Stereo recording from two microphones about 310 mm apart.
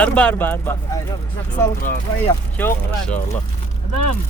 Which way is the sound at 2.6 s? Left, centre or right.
Centre.